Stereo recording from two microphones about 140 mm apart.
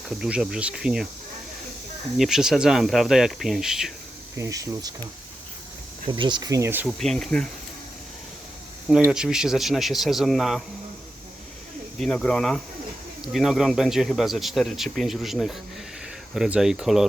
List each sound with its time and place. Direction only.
0.1 s speech: 5° right (ahead or behind)
2.1 s speech: 5° right (ahead or behind)
4.4 s speech: 25° right (ahead or behind)
6.1 s speech: 35° right (ahead or behind); by 6.8 s 20° right (ahead or behind)
6.8 s speech: centre (ahead or behind)
9.0 s speech: 5° right (ahead or behind)
11.9 s speech: 5° left (ahead or behind)